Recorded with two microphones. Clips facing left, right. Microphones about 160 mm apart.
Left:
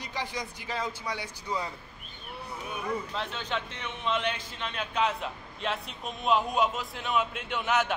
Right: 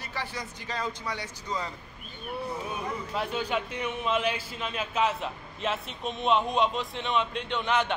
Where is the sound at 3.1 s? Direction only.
10° right (ahead or behind).